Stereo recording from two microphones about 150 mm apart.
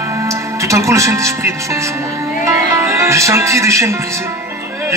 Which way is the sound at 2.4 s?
20° right (ahead or behind).